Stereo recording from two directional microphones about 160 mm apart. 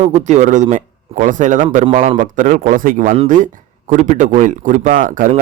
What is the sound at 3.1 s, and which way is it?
Speech, 40° right (ahead or behind).